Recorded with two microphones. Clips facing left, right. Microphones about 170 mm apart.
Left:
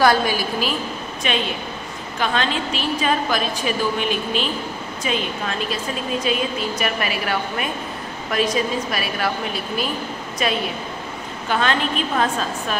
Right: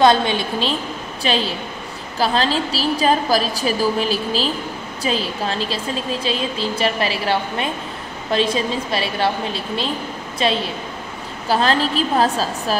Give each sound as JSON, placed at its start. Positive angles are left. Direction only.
{"t": 0.0, "sound": "a woman's voice", "side_deg": -25}